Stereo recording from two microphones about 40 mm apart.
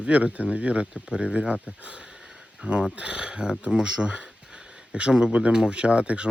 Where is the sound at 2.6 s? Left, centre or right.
Right.